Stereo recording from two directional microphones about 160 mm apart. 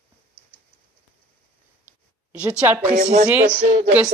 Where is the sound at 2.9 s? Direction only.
45° right (ahead or behind).